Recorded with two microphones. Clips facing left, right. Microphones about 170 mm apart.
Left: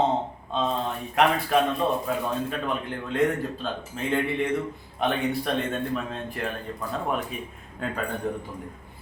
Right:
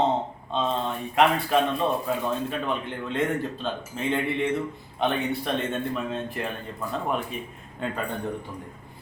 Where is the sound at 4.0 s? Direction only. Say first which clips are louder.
Left 1 dB; centre (ahead or behind).